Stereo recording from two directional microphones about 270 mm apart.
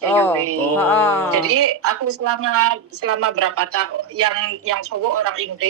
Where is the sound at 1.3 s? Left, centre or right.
Right.